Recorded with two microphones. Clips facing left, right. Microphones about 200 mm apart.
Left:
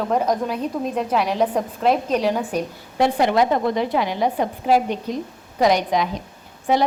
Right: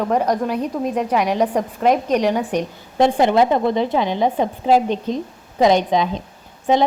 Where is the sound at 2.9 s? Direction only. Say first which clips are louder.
Right 3 dB; 25° right (ahead or behind).